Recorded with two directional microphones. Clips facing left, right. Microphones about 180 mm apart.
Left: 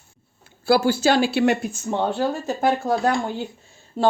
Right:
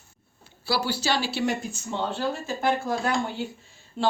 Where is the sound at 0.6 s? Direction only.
50° left (ahead or behind).